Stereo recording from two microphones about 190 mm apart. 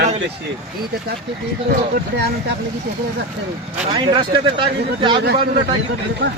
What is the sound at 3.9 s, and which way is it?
Speech, 25° right (ahead or behind).